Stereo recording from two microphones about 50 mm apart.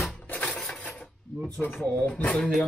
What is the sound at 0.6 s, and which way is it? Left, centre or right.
Coin, left.